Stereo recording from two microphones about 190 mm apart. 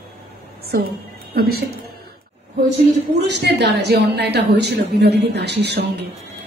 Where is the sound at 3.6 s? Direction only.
60° right (ahead or behind).